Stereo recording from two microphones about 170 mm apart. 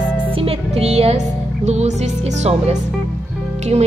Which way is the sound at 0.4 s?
35° right (ahead or behind).